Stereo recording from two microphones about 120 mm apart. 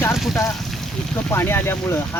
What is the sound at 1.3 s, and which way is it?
Speech, 20° left (ahead or behind).